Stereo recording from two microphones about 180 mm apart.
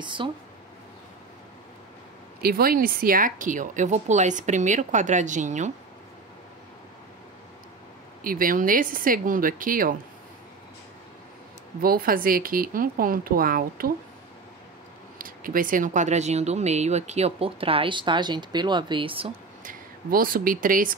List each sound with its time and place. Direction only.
0.0 s speech: 25° right (ahead or behind)
2.4 s speech: 55° right (ahead or behind)
8.2 s speech: 50° right (ahead or behind)
11.8 s speech: 55° right (ahead or behind)
15.1 s speech: 50° right (ahead or behind); by 19.3 s 30° right (ahead or behind)
19.6 s speech: 50° right (ahead or behind)